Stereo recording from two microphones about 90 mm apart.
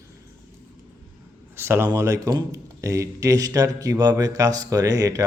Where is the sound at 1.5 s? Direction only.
25° right (ahead or behind).